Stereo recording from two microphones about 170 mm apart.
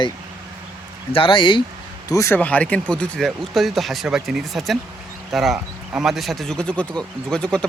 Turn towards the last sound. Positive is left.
turn(degrees=5)  # may be behind; listen again after turning